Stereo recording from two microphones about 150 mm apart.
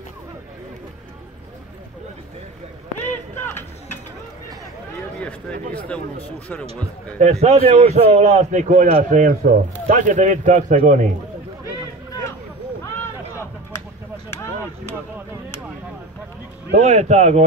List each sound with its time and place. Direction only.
3.3 s music: 15° left (ahead or behind)
5.8 s speech: 10° left (ahead or behind)
7.2 s a man's voice: 50° right (ahead or behind)
16.7 s a man's voice: 50° right (ahead or behind)